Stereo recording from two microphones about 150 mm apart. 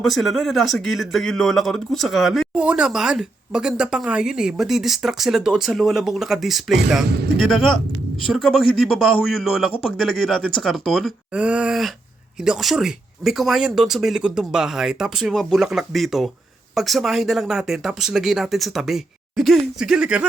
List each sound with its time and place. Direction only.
0.0 s speech: centre (ahead or behind)
7.1 s speech: 90° right
7.3 s speech: centre (ahead or behind)